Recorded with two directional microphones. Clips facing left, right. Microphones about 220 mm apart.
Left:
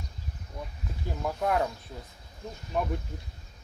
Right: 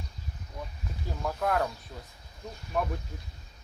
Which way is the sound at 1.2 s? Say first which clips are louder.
Left 1 dB; 15° left (ahead or behind).